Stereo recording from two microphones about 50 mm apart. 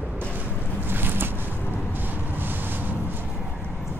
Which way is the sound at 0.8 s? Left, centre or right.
Right.